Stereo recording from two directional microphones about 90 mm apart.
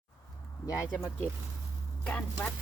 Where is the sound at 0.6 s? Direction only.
40° left (ahead or behind).